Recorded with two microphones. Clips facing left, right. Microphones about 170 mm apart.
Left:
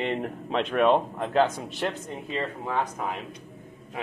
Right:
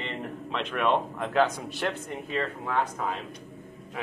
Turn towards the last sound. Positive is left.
turn(degrees=15)  # may be behind; listen again after turning